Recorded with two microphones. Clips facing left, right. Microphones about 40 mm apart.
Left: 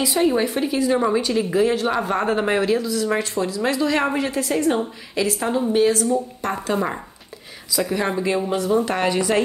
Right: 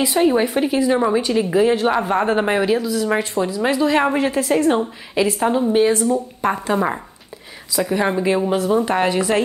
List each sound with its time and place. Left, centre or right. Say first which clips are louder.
0.0 s a woman's voice: right 3 dB; right
4.2 s a woman's voice: right 4 dB; right; by 9.4 s centre